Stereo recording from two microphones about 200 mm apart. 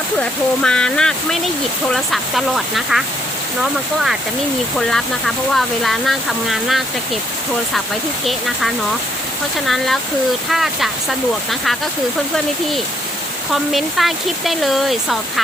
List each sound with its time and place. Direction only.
0.2 s speech: 5° left (ahead or behind)
8.3 s speech: centre (ahead or behind)
13.5 s speech: centre (ahead or behind)